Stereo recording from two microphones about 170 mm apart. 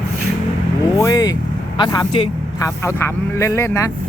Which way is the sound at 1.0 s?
20° left (ahead or behind).